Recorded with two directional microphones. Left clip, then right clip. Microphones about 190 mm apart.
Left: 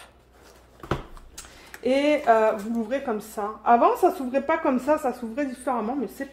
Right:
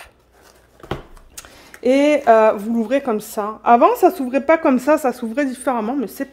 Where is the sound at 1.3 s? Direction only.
70° right (ahead or behind).